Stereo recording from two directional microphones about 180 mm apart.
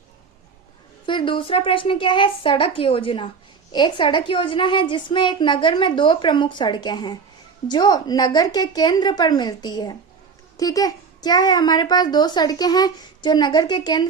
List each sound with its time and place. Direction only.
1.0 s a woman's voice: 25° left (ahead or behind)